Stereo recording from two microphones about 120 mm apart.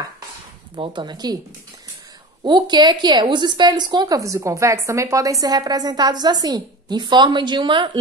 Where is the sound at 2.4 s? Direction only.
35° right (ahead or behind).